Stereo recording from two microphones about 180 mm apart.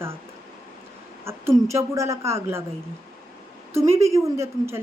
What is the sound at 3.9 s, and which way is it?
Speech, 15° right (ahead or behind).